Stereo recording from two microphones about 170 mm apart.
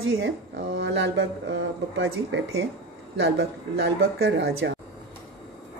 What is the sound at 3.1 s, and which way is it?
Speech, 80° right.